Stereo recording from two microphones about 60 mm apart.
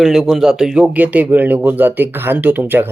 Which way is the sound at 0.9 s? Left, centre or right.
Right.